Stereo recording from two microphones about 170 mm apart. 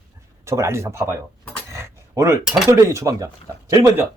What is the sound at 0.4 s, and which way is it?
Speech, 15° right (ahead or behind).